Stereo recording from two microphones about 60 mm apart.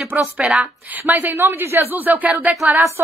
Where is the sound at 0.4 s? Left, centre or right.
Centre.